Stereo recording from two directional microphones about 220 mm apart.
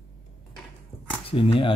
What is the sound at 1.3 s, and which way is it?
Speech, 25° left (ahead or behind).